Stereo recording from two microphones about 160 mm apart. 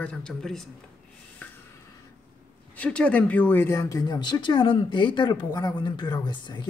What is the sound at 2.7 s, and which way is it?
Speech, 10° left (ahead or behind).